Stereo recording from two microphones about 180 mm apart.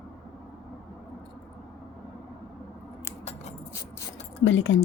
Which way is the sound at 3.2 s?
40° left (ahead or behind).